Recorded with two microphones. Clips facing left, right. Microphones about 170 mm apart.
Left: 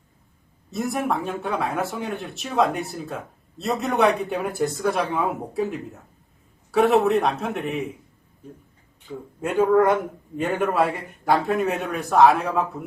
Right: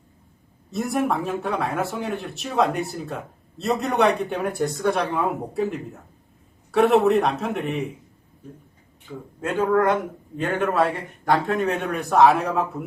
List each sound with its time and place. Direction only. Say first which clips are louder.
0.7 s speech: right 1 dB; centre (ahead or behind)
9.4 s speech: left 2 dB; 5° left (ahead or behind)